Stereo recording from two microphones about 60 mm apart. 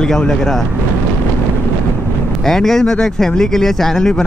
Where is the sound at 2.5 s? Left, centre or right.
Centre.